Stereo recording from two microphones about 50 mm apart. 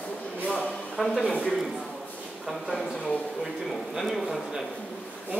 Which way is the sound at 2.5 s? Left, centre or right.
Centre.